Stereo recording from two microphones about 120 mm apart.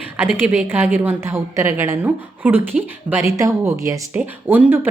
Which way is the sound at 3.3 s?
25° right (ahead or behind).